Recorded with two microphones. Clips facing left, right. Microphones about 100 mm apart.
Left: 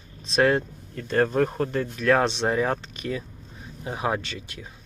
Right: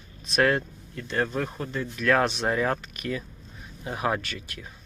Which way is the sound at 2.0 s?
30° left (ahead or behind).